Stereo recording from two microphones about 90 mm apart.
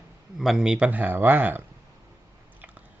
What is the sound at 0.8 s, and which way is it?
Speech, 20° right (ahead or behind).